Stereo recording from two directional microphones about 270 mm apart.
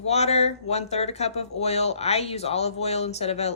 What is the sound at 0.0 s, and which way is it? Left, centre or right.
Speech, left.